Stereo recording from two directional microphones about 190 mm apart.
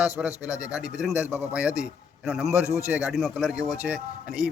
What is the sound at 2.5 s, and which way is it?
Speech, 15° left (ahead or behind).